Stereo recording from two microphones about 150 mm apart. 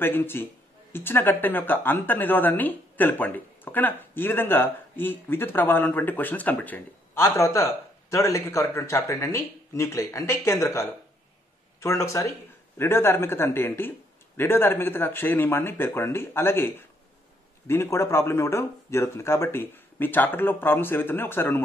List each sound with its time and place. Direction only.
0.0 s speech: 15° left (ahead or behind)